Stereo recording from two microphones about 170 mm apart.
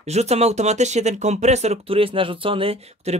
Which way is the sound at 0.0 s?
40° right (ahead or behind).